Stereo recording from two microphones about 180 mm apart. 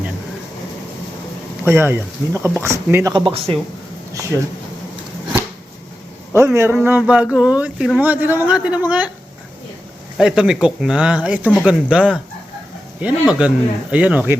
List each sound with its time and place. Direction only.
1.6 s speech: 15° right (ahead or behind); by 3.5 s 30° right (ahead or behind)
4.3 s speech: 10° right (ahead or behind)
6.3 s speech: 15° right (ahead or behind)
10.2 s speech: 5° right (ahead or behind)